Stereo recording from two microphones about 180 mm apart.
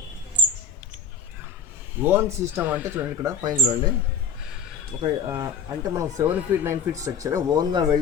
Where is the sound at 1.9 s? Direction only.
10° right (ahead or behind).